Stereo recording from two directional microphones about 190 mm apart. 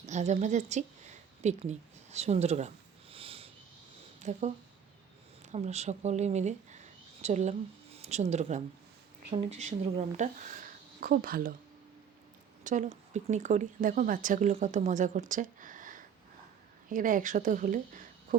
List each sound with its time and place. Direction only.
0.0 s a sound: 40° right (ahead or behind)
4.2 s a woman's voice: 35° right (ahead or behind)
12.6 s speech: 40° right (ahead or behind)